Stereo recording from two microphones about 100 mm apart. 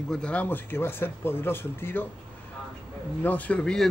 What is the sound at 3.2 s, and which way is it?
Speech, 15° left (ahead or behind).